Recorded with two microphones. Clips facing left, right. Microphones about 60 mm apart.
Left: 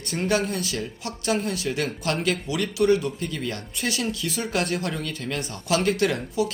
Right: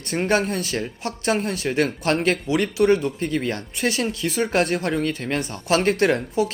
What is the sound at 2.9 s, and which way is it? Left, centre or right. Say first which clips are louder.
Speech: right 2 dB; right.